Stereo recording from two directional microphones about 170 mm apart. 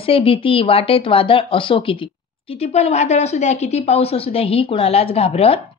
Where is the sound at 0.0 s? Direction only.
35° left (ahead or behind).